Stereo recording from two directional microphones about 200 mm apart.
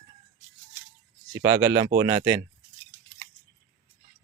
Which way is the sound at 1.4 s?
15° right (ahead or behind).